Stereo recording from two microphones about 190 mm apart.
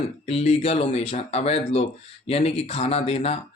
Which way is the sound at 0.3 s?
35° left (ahead or behind).